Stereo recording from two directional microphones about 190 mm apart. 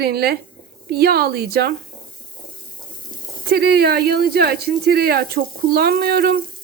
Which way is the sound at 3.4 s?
55° right (ahead or behind).